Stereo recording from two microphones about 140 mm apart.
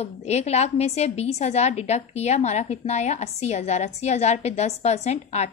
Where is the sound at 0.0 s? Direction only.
50° left (ahead or behind).